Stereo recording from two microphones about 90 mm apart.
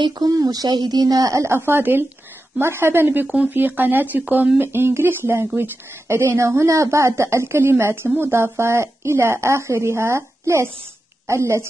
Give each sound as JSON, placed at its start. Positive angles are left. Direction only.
{"t": 0.0, "sound": "a woman's voice", "side_deg": -45}